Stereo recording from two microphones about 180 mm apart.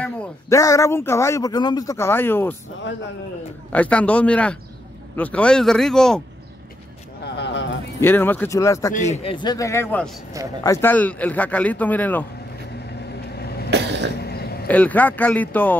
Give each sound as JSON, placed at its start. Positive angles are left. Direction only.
{"t": 0.5, "sound": "a man's voice", "side_deg": 15}
{"t": 3.7, "sound": "a man's voice", "side_deg": 10}
{"t": 7.3, "sound": "a sound", "side_deg": 75}
{"t": 8.0, "sound": "a man's voice", "side_deg": 10}
{"t": 8.9, "sound": "a man's voice", "side_deg": 40}
{"t": 13.4, "sound": "cough", "side_deg": 60}
{"t": 13.7, "sound": "cough", "side_deg": -75}
{"t": 14.2, "sound": "a sound", "side_deg": 60}
{"t": 14.7, "sound": "a man's voice", "side_deg": 10}